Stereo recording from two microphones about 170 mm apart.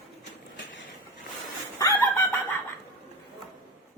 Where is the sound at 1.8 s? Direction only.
15° left (ahead or behind).